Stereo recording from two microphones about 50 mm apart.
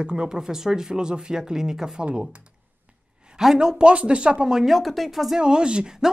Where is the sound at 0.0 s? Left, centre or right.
Centre.